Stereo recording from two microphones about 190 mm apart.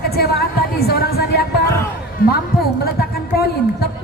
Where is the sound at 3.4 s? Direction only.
55° left (ahead or behind).